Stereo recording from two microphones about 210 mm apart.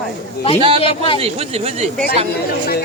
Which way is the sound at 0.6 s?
25° right (ahead or behind).